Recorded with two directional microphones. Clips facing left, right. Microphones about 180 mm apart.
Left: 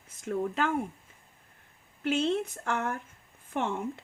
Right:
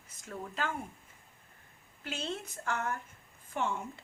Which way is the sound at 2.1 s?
60° left (ahead or behind).